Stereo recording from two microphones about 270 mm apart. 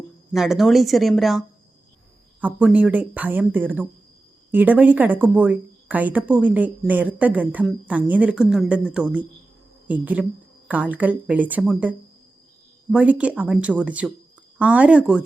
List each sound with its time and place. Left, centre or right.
0.3 s a woman's voice: centre